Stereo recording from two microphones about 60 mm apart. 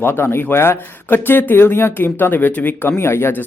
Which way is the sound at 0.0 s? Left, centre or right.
Left.